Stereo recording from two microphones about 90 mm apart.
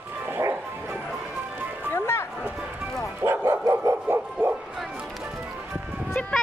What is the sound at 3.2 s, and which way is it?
Dog, 30° right (ahead or behind).